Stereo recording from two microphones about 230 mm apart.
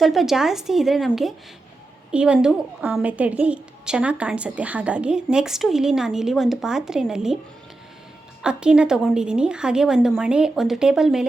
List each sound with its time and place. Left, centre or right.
0.0 s a woman's voice: centre
8.4 s a woman's voice: centre